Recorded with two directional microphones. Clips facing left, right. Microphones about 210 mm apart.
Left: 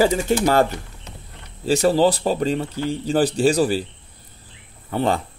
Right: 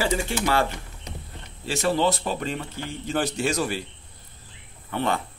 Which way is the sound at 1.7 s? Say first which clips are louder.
Left 7 dB; 35° left (ahead or behind).